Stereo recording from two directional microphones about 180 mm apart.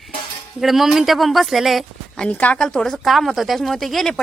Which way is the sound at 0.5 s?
Centre (ahead or behind).